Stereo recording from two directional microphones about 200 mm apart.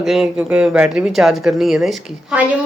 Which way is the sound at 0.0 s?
Centre (ahead or behind).